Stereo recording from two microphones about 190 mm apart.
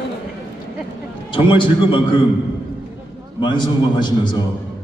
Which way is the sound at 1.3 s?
25° left (ahead or behind).